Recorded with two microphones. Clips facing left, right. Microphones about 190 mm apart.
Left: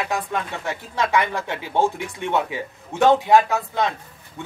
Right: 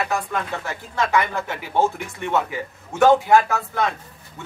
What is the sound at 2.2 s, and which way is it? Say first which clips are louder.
Speech: even; 20° left (ahead or behind).